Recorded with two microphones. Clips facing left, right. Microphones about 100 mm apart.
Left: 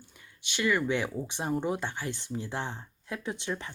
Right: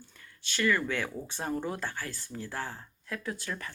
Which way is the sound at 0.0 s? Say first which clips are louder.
Even; 15° left (ahead or behind).